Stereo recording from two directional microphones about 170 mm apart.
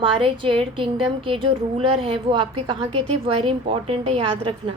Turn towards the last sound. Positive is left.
turn(degrees=-30)  # may be behind; listen again after turning